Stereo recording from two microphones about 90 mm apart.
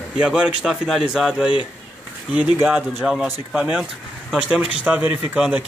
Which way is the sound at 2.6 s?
10° right (ahead or behind).